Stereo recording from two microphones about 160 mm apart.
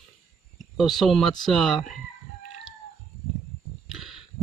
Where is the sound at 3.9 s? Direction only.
Centre (ahead or behind).